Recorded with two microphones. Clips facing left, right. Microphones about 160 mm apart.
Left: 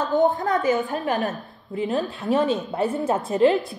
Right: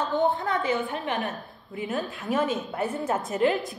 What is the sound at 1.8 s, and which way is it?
A woman's voice, 35° left (ahead or behind).